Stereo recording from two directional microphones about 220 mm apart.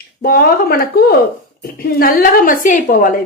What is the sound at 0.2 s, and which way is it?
A woman's voice, 45° left (ahead or behind).